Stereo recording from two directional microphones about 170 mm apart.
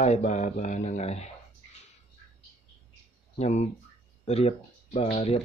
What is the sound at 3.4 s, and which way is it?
Speech, 40° left (ahead or behind).